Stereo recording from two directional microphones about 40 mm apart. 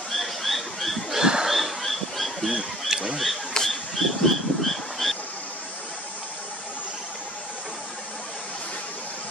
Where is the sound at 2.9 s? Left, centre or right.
Centre.